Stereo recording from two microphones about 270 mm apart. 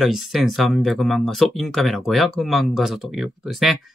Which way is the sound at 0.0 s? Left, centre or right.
Centre.